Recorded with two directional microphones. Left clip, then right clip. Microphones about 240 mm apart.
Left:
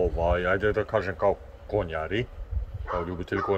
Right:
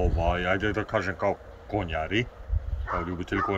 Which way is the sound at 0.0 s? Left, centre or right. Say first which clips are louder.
Left 2 dB; centre.